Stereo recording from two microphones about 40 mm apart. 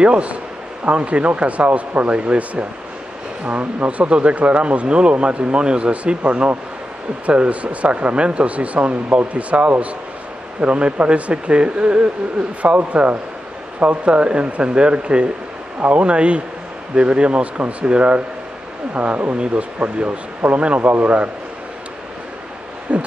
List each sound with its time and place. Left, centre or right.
0.0 s speech: right
18.9 s speech: right
19.4 s speech: right
22.9 s a sound: right